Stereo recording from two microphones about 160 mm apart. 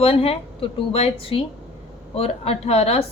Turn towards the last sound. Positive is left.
turn(degrees=40)  # may be behind; listen again after turning